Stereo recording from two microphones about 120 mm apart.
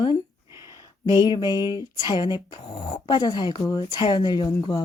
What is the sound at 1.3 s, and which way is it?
Speech, 35° left (ahead or behind).